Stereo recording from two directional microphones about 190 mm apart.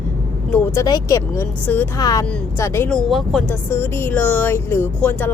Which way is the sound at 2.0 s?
20° left (ahead or behind).